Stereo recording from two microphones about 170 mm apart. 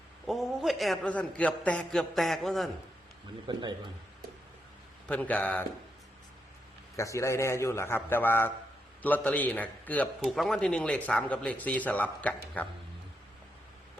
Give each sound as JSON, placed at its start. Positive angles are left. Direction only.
{"t": 0.3, "sound": "a man's voice", "side_deg": 0}
{"t": 3.4, "sound": "speech", "side_deg": -25}
{"t": 5.0, "sound": "a man's voice", "side_deg": 10}
{"t": 6.9, "sound": "a man's voice", "side_deg": 20}